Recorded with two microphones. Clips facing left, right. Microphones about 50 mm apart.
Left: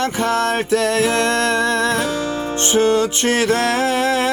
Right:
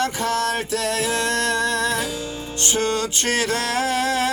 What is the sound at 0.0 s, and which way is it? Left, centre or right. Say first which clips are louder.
Music: left 4 dB; left.